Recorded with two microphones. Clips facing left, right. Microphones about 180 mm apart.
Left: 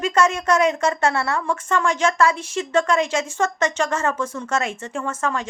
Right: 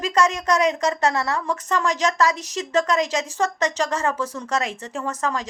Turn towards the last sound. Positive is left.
turn(degrees=-35)  # may be behind; listen again after turning